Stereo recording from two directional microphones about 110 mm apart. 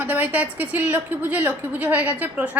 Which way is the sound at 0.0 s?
15° right (ahead or behind).